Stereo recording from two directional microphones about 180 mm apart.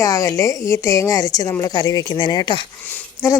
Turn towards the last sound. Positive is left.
turn(degrees=20)  # may be behind; listen again after turning